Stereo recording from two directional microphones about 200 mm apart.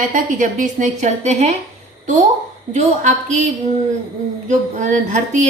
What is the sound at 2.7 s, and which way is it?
A woman's voice, 35° right (ahead or behind).